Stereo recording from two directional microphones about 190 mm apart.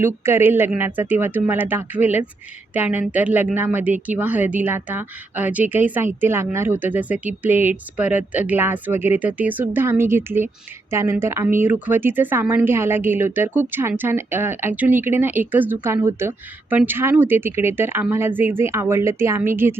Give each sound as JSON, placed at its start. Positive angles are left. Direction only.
{"t": 0.0, "sound": "speech", "side_deg": -10}